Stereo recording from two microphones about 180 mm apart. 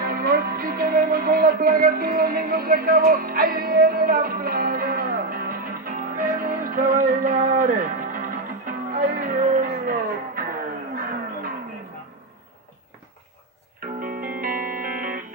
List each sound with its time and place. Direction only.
0.0 s music: 55° right (ahead or behind)
13.7 s music: 50° right (ahead or behind)